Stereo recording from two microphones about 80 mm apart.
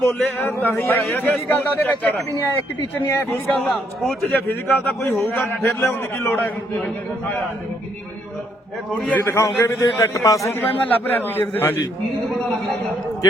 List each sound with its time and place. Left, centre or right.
0.0 s a man's voice: left
1.1 s a man's voice: left
8.9 s a man's voice: centre
9.1 s a man's voice: left
10.5 s a man's voice: left